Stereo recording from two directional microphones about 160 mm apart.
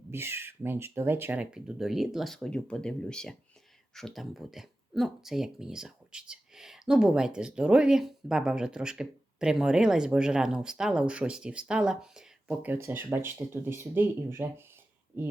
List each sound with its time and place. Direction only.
0.1 s speech: 15° right (ahead or behind)